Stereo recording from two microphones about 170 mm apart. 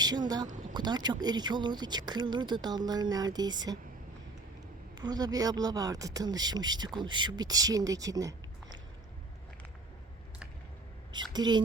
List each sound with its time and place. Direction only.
0.7 s speech: 25° right (ahead or behind)
4.9 s speech: 25° right (ahead or behind)
11.1 s speech: 25° right (ahead or behind)